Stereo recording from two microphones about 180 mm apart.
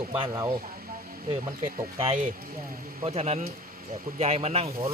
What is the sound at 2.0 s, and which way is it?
Speech, 40° right (ahead or behind).